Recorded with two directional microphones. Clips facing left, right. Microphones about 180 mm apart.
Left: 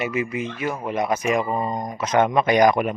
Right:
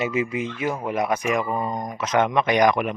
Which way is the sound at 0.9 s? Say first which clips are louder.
Left 3 dB; 25° left (ahead or behind).